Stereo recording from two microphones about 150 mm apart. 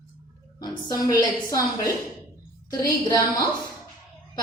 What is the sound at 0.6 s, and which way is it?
Speech, 25° left (ahead or behind).